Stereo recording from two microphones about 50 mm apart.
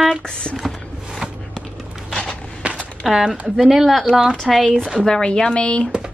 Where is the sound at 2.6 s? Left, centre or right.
Right.